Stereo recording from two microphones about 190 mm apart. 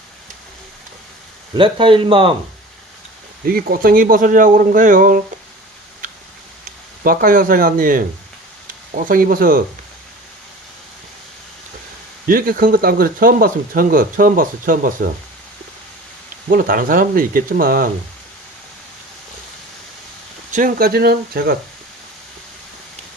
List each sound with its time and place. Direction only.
1.5 s speech: 25° right (ahead or behind)
3.4 s speech: 50° right (ahead or behind)
7.0 s speech: 50° right (ahead or behind)
12.3 s speech: 50° right (ahead or behind)
16.5 s speech: 50° right (ahead or behind)
20.5 s speech: 45° right (ahead or behind)